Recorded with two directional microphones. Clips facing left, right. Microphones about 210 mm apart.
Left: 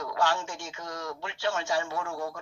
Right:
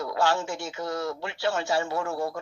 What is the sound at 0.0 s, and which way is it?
A man's voice, 40° right (ahead or behind).